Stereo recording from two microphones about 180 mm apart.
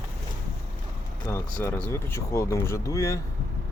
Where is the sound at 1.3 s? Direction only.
15° left (ahead or behind).